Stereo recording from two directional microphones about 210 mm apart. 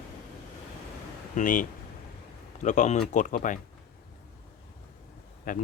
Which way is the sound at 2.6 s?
35° left (ahead or behind).